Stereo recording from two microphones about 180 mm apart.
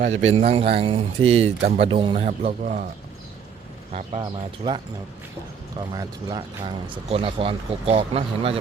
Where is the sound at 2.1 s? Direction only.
40° right (ahead or behind).